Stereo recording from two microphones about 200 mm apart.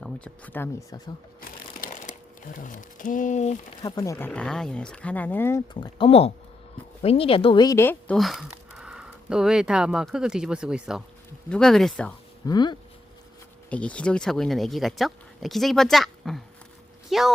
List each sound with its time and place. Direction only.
0.0 s speech: 10° left (ahead or behind)
1.4 s crumpling: 40° left (ahead or behind)
3.8 s speech: 20° left (ahead or behind)
4.3 s speech: 5° left (ahead or behind)
6.0 s speech: 30° left (ahead or behind); by 12.1 s 5° left (ahead or behind)
12.5 s speech: 20° left (ahead or behind)
13.7 s speech: 5° left (ahead or behind)